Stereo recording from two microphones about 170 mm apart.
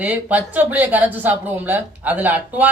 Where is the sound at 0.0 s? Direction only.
10° right (ahead or behind).